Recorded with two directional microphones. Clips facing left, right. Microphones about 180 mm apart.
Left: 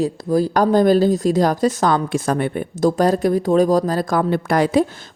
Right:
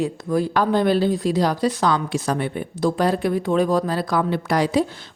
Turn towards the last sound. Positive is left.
turn(degrees=50)  # may be behind; listen again after turning